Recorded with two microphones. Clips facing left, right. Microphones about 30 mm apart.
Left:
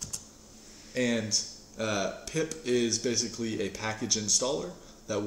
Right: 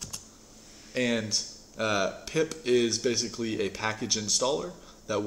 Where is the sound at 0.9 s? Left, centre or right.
Centre.